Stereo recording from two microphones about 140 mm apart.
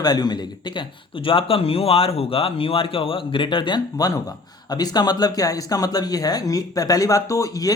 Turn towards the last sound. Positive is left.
turn(degrees=25)  # may be behind; listen again after turning